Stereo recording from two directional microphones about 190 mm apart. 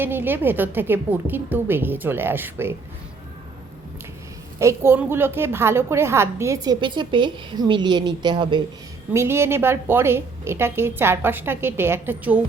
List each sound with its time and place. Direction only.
0.0 s a woman's voice: 10° right (ahead or behind)
4.6 s a woman's voice: 10° right (ahead or behind)
9.1 s a woman's voice: 15° right (ahead or behind)